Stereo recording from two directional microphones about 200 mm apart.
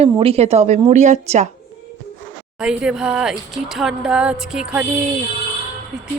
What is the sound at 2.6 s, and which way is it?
Speech, 5° right (ahead or behind).